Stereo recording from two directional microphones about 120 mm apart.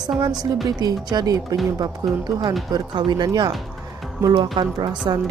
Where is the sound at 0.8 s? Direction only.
35° right (ahead or behind).